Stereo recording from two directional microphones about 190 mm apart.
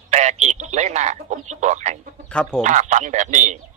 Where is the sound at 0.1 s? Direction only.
35° right (ahead or behind).